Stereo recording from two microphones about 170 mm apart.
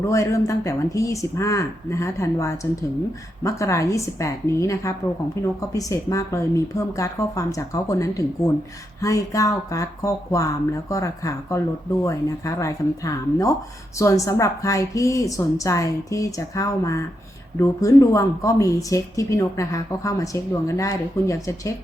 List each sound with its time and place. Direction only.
0.1 s speech: 20° left (ahead or behind)